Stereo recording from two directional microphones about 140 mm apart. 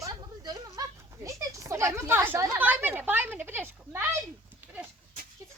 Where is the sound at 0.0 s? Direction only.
25° right (ahead or behind).